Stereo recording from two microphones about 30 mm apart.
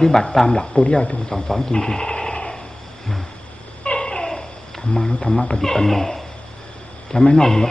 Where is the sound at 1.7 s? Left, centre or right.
Left.